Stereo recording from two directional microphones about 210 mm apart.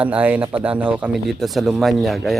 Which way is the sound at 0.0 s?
5° right (ahead or behind).